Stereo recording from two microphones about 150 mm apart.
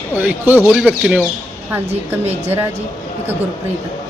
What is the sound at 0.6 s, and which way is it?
Speech, centre (ahead or behind).